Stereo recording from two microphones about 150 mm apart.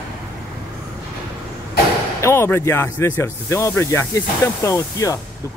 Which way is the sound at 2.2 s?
20° left (ahead or behind).